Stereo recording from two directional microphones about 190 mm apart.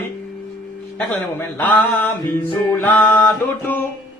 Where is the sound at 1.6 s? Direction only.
10° left (ahead or behind).